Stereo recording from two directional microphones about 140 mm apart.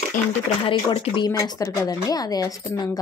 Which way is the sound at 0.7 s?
35° left (ahead or behind).